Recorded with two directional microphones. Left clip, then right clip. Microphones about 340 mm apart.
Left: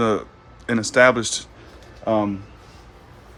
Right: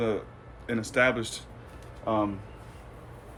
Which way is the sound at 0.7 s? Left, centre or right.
Centre.